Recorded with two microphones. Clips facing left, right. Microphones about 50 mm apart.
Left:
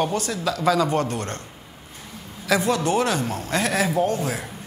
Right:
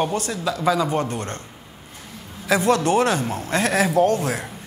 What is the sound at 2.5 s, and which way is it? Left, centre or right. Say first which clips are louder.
Speech: right 3 dB; right.